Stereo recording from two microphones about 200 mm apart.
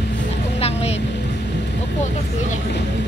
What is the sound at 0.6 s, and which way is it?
Vehicle, 30° left (ahead or behind).